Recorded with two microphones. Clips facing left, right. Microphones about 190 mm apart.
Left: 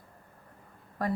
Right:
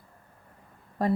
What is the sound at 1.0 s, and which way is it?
Speech, 25° right (ahead or behind).